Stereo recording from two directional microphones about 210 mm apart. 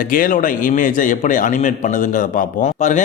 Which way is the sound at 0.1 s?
40° left (ahead or behind).